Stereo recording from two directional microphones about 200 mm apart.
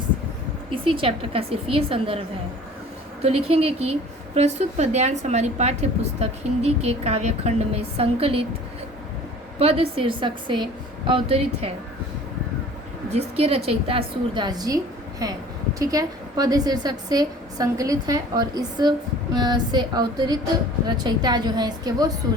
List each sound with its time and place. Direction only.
0.7 s a woman's voice: 25° right (ahead or behind)
9.6 s a woman's voice: 30° right (ahead or behind)
13.1 s a woman's voice: 30° right (ahead or behind)